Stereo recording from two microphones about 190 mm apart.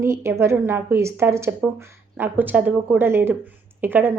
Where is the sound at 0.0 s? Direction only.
15° right (ahead or behind).